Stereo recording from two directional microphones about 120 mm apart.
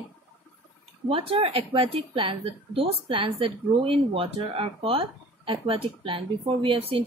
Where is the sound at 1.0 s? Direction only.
50° right (ahead or behind).